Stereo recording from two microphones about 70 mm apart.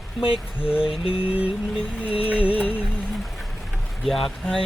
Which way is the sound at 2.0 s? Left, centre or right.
Centre.